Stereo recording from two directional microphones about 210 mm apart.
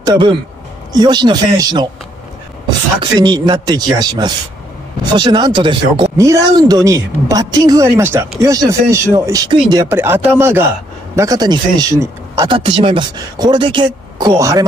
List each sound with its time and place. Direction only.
0.0 s speech: 20° right (ahead or behind)
3.0 s speech: 20° right (ahead or behind)